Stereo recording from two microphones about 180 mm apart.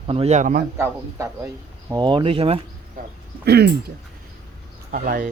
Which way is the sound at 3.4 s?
65° right (ahead or behind).